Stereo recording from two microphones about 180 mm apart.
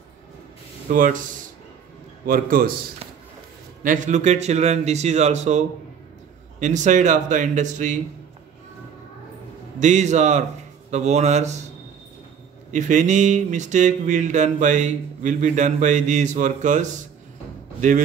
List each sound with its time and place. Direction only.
0.8 s speech: 45° right (ahead or behind)
2.2 s speech: 50° right (ahead or behind)
3.8 s speech: 45° right (ahead or behind)
9.8 s speech: 40° right (ahead or behind)
12.7 s speech: 45° right (ahead or behind)